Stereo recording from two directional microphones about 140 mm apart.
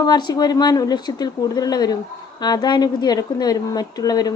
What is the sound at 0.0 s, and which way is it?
A woman's voice, 30° left (ahead or behind).